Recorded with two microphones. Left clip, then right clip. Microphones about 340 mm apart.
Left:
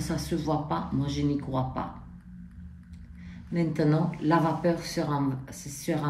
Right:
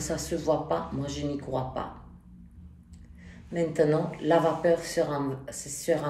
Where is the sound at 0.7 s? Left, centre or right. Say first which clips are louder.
Left 1 dB; right.